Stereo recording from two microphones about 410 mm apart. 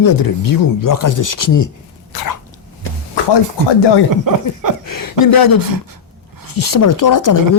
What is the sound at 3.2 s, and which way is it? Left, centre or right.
Music, left.